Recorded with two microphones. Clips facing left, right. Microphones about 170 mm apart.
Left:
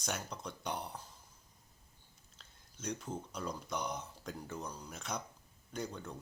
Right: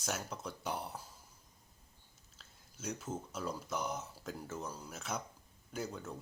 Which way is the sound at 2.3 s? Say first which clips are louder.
Even; 5° right (ahead or behind).